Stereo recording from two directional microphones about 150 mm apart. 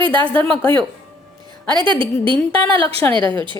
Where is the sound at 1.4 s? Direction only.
30° right (ahead or behind).